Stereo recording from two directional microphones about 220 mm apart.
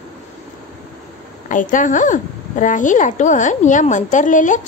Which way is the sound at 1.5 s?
35° left (ahead or behind).